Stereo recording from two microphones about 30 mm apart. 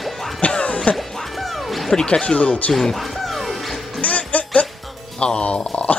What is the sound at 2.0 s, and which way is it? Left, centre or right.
Speech, left.